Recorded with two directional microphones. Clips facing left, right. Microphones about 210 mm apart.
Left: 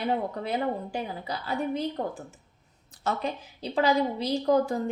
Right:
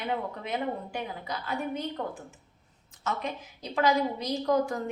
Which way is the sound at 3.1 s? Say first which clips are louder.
Left 3 dB; 30° left (ahead or behind).